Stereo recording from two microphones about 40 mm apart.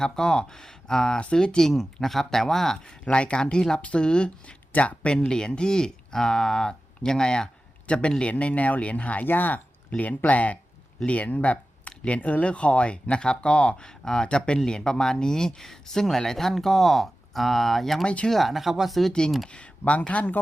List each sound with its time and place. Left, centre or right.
0.0 s speech: centre
1.7 s speech: centre
3.0 s speech: left
4.8 s speech: left
5.3 s speech: left
7.9 s speech: left
9.2 s speech: left
10.0 s speech: left; by 18.9 s centre
19.5 s speech: left